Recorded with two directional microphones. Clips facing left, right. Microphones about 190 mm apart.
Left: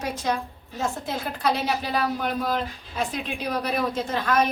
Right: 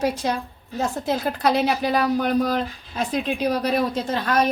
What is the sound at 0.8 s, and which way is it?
A woman's voice, 40° right (ahead or behind).